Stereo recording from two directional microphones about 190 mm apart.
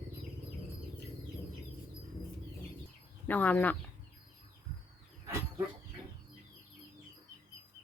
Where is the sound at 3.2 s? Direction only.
10° left (ahead or behind).